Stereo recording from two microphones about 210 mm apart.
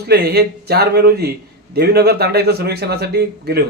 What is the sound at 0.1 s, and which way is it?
A man's voice, 50° right (ahead or behind).